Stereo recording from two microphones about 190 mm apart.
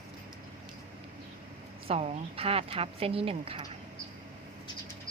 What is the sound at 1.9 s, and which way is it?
A woman's voice, 30° right (ahead or behind).